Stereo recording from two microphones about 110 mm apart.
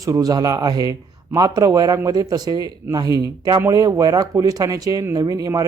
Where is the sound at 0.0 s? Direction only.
30° right (ahead or behind).